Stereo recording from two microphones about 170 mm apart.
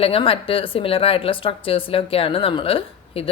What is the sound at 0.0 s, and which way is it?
A woman's voice, 35° left (ahead or behind).